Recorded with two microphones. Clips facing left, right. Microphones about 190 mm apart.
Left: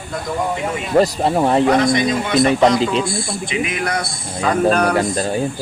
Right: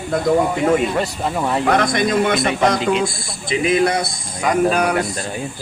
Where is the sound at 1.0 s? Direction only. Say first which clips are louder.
Left 6 dB; 35° left (ahead or behind).